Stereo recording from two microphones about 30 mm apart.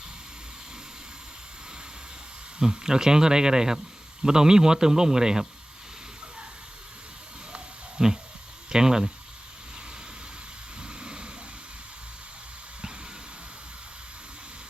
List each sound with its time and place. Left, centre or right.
2.6 s a man's voice: right
8.0 s a man's voice: right
10.8 s a sound: right